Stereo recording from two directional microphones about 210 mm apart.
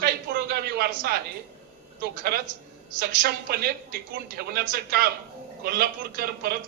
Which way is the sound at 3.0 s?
45° right (ahead or behind).